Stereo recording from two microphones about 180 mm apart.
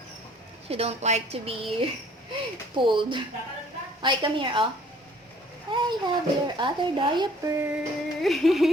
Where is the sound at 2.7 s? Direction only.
25° right (ahead or behind).